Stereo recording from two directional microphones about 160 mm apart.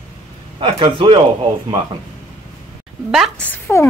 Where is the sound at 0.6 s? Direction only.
35° right (ahead or behind).